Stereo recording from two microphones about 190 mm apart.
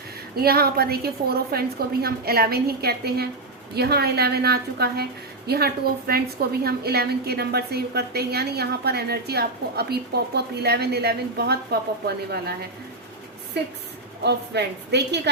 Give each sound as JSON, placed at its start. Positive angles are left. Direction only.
{"t": 0.3, "sound": "a woman's voice", "side_deg": -55}
{"t": 14.3, "sound": "a woman's voice", "side_deg": -60}